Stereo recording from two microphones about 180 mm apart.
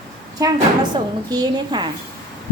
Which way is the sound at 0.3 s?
20° right (ahead or behind).